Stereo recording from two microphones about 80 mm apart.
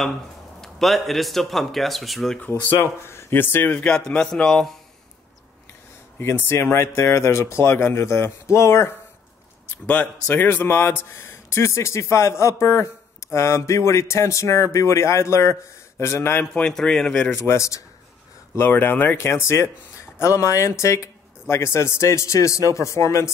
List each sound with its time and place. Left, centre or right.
0.6 s speech: centre
2.6 s speech: left
3.7 s a man's voice: centre
6.1 s a man's voice: left
9.8 s a man's voice: left
16.5 s a man's voice: centre
17.5 s a man's voice: left
18.6 s a man's voice: left